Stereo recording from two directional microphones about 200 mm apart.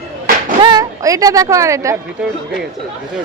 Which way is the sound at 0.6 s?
20° right (ahead or behind).